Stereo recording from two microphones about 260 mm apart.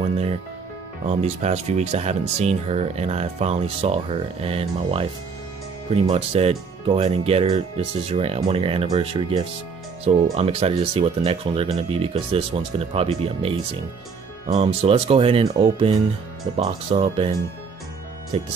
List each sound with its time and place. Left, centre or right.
1.0 s speech: right
18.3 s speech: right